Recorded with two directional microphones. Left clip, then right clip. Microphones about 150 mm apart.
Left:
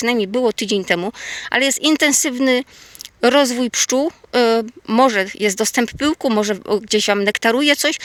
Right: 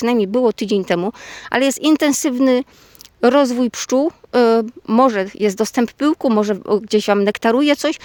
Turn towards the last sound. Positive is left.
turn(degrees=-35)  # may be behind; listen again after turning